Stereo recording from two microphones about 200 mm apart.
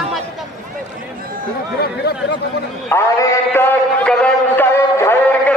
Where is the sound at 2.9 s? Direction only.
15° left (ahead or behind).